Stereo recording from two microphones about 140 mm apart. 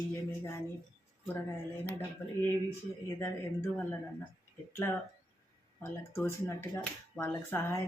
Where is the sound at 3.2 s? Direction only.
15° left (ahead or behind).